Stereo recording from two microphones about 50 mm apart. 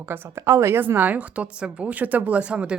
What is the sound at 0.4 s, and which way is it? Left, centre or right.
Speech, right.